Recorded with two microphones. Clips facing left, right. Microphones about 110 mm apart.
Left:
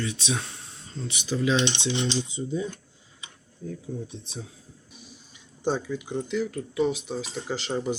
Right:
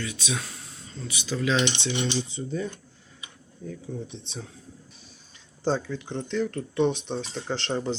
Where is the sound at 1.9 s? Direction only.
25° left (ahead or behind).